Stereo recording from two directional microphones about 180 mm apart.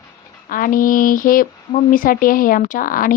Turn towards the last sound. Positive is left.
turn(degrees=50)  # may be behind; listen again after turning